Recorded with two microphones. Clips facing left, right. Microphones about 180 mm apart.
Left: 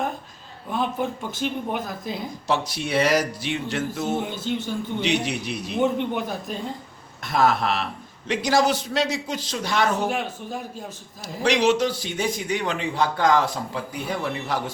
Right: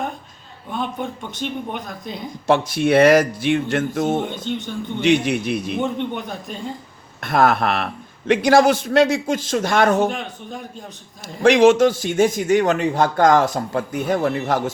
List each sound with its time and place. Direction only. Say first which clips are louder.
0.7 s speech: left 1 dB; 5° left (ahead or behind)
2.5 s a man's voice: right 9 dB; 55° right (ahead or behind)
4.2 s speech: right 2 dB; 5° left (ahead or behind)
5.0 s a man's voice: right 10 dB; 50° right (ahead or behind)
5.8 s speech: left 1 dB; 5° left (ahead or behind)
7.2 s a man's voice: right 4 dB; 55° right (ahead or behind)
10.1 s speech: left 1 dB; 5° left (ahead or behind)
11.4 s a man's voice: right 8 dB; 50° right (ahead or behind)